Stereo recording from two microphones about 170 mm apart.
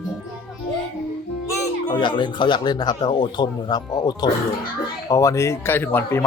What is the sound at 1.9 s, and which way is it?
A man's voice, 25° left (ahead or behind).